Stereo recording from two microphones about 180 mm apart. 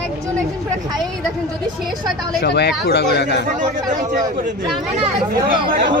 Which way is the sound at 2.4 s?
65° left (ahead or behind).